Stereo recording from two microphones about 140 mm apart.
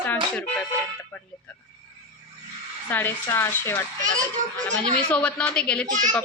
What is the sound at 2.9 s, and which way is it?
Speech, 15° left (ahead or behind).